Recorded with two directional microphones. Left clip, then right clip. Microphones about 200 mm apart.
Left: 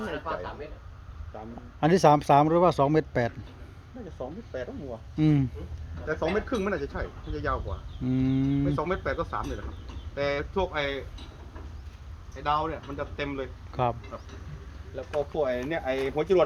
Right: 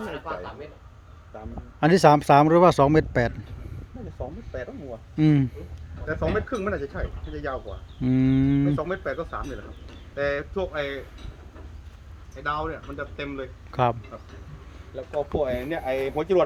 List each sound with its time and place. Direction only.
0.0 s speech: 55° right (ahead or behind)
1.8 s speech: 25° right (ahead or behind)
4.5 s speech: 25° right (ahead or behind)
6.5 s speech: 15° right (ahead or behind)
8.0 s speech: 30° right (ahead or behind)
8.7 s speech: 10° right (ahead or behind)
12.4 s speech: 10° right (ahead or behind)
13.7 s speech: 30° right (ahead or behind)
15.4 s speech: 30° right (ahead or behind)